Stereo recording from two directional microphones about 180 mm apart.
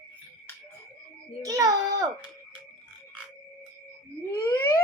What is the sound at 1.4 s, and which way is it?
Speech, 20° right (ahead or behind).